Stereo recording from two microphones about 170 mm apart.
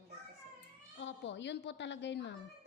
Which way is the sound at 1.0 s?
90° left.